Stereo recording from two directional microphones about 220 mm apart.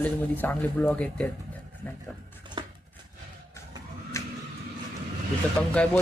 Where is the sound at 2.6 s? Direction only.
20° right (ahead or behind).